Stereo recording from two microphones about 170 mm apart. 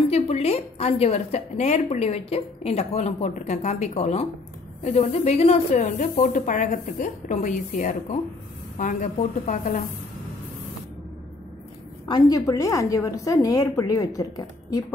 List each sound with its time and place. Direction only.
0.1 s a woman's voice: 40° left (ahead or behind)
12.1 s a woman's voice: 25° left (ahead or behind)